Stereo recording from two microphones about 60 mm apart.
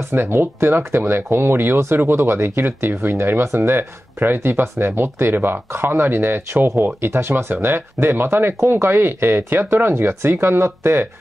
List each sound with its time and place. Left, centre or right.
0.0 s speech: right